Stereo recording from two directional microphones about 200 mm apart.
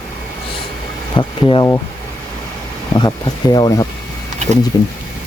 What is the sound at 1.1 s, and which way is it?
Speech, 25° left (ahead or behind).